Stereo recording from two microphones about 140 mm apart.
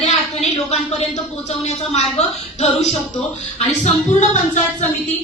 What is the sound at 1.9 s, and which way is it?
Speech, 50° left (ahead or behind).